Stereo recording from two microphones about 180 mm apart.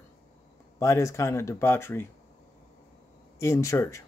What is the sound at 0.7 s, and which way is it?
Speech, 15° left (ahead or behind).